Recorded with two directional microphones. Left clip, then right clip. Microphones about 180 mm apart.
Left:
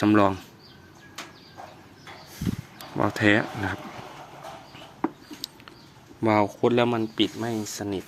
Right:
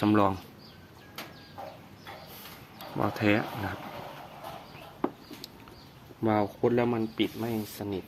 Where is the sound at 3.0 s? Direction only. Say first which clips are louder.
Left 5 dB; 20° left (ahead or behind).